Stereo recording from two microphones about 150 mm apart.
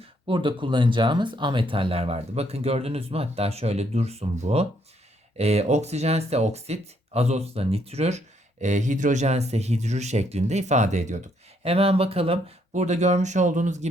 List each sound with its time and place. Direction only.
0.0 s speech: 35° right (ahead or behind); by 13.8 s 55° right (ahead or behind)